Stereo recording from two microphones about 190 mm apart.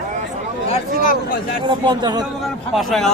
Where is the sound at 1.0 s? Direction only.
45° left (ahead or behind).